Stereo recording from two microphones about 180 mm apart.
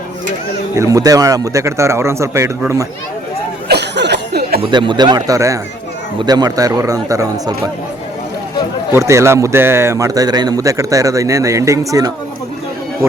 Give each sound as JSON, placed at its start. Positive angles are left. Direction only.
{"t": 0.8, "sound": "a man's voice", "side_deg": -20}
{"t": 3.7, "sound": "a sound", "side_deg": -70}
{"t": 4.7, "sound": "speech", "side_deg": -25}
{"t": 8.9, "sound": "a man's voice", "side_deg": -15}